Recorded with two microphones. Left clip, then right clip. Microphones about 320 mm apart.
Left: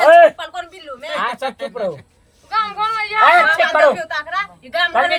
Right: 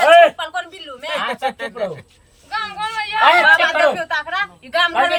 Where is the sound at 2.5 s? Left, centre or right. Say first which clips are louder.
Left 4 dB; centre.